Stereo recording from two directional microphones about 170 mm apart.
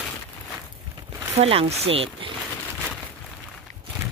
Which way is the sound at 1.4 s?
35° right (ahead or behind).